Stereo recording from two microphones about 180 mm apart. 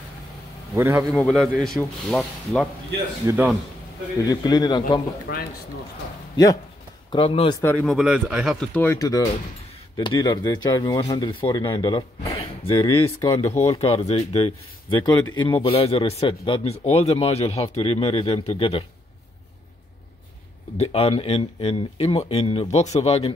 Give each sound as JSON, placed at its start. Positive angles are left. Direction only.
{"t": 0.7, "sound": "a man's voice", "side_deg": -15}
{"t": 1.1, "sound": "speech", "side_deg": 0}
{"t": 4.2, "sound": "speech", "side_deg": 20}
{"t": 5.3, "sound": "speech", "side_deg": 60}
{"t": 6.3, "sound": "speech", "side_deg": 20}
{"t": 7.1, "sound": "speech", "side_deg": 30}
{"t": 7.6, "sound": "speech", "side_deg": 5}
{"t": 8.7, "sound": "speech", "side_deg": 15}
{"t": 20.7, "sound": "speech", "side_deg": 35}